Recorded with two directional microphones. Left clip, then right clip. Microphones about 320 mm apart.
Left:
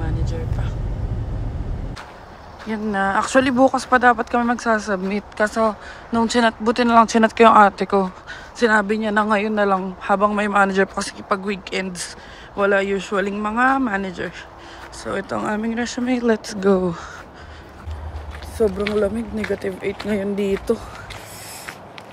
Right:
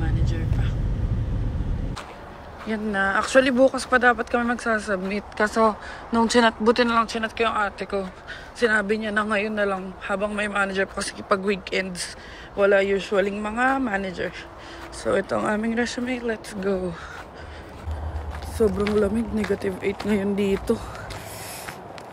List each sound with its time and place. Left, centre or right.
2.6 s a man's voice: centre
16.1 s a man's voice: centre
18.6 s speech: centre